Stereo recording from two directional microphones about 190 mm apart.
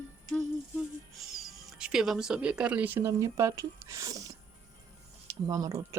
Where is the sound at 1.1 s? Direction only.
Centre (ahead or behind).